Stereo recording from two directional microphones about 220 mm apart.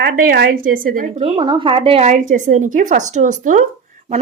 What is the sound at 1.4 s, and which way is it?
Speech, 20° right (ahead or behind).